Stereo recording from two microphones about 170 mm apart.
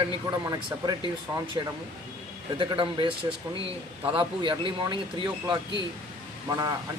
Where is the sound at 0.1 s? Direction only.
25° right (ahead or behind).